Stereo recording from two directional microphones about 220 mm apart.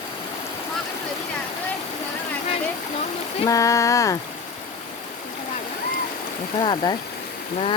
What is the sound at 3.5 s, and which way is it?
Speech, 15° left (ahead or behind).